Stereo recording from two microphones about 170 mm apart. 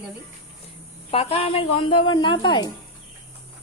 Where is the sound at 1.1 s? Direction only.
35° left (ahead or behind).